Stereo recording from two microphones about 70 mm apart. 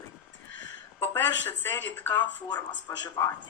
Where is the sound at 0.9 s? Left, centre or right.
Left.